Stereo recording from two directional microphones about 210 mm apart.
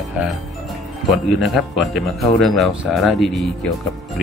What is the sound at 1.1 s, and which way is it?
Speech, centre (ahead or behind).